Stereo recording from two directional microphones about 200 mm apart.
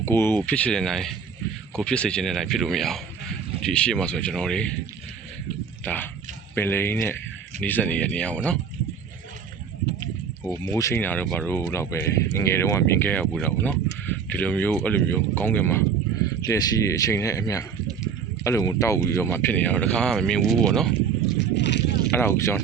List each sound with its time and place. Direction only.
0.0 s speech: 10° left (ahead or behind)
5.8 s speech: 10° left (ahead or behind)
10.8 s speech: 15° left (ahead or behind)
20.9 s a sound: 60° left (ahead or behind)
22.1 s speech: 10° left (ahead or behind)